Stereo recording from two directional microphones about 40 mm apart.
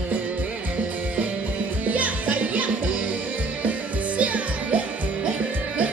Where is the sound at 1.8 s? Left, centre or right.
Right.